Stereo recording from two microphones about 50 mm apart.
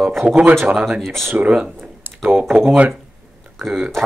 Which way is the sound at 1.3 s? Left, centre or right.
Right.